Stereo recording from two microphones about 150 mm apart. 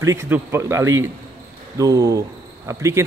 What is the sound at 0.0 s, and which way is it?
Speech, 20° right (ahead or behind).